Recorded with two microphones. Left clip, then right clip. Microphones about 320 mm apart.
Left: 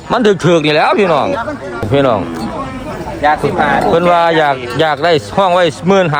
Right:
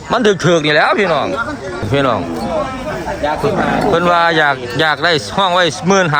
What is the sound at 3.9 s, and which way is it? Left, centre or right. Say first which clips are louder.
Speech: even; centre.